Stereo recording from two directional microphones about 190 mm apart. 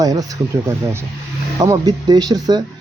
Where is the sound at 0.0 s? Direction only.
20° right (ahead or behind).